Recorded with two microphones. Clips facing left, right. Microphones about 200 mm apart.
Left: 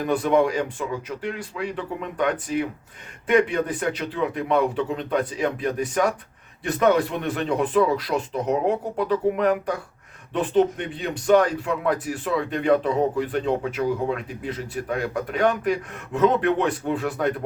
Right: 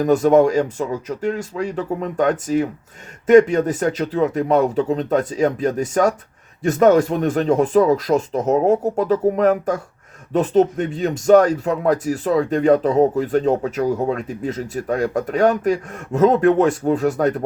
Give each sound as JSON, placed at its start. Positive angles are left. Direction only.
{"t": 0.0, "sound": "speech", "side_deg": -45}